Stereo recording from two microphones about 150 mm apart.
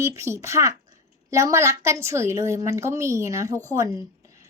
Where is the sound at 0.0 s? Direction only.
20° right (ahead or behind).